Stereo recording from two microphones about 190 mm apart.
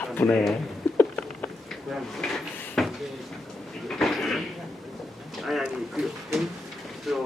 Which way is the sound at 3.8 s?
Centre (ahead or behind).